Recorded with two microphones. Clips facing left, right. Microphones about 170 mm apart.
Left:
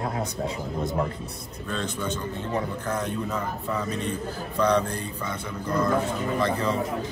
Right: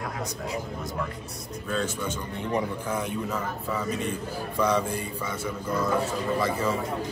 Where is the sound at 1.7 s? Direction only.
10° right (ahead or behind).